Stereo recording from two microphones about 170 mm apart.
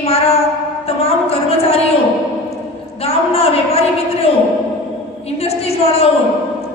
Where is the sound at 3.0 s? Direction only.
35° left (ahead or behind).